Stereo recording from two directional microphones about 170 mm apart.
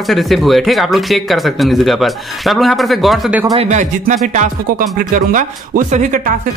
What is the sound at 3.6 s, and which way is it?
Speech, 45° right (ahead or behind).